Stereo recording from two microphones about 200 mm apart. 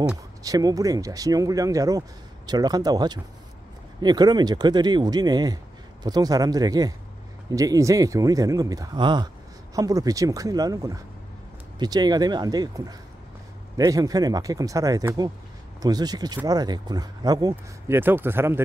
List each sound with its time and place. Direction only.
0.4 s speech: 20° right (ahead or behind)